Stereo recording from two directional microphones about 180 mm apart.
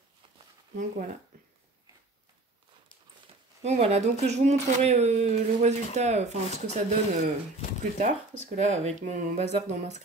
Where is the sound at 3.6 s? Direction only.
35° right (ahead or behind).